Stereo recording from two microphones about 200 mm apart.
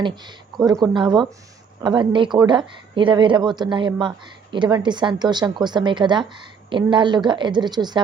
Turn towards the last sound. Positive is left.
turn(degrees=-20)  # may be behind; listen again after turning